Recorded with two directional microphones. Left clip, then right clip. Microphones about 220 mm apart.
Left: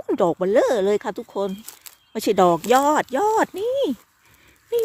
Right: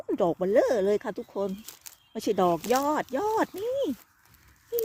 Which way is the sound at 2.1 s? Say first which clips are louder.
Left 8 dB; 35° left (ahead or behind).